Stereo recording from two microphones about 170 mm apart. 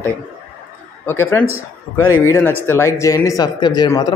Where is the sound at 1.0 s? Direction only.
15° left (ahead or behind).